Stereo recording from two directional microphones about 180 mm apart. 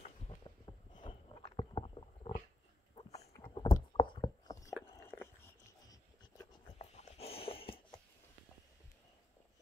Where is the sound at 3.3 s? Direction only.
25° left (ahead or behind).